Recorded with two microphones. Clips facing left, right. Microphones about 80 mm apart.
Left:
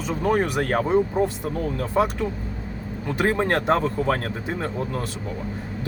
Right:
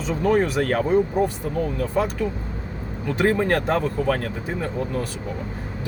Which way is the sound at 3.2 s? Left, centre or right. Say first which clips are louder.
Even; left.